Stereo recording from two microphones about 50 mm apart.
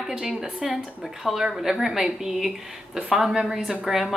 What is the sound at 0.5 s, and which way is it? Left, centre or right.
A woman's voice, centre.